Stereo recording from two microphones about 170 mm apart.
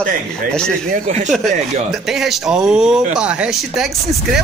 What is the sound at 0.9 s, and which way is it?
Speech, 45° right (ahead or behind).